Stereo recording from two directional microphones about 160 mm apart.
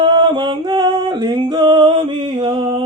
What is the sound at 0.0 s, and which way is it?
Music, 30° right (ahead or behind).